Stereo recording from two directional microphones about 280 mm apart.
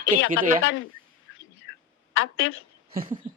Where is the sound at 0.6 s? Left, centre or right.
Left.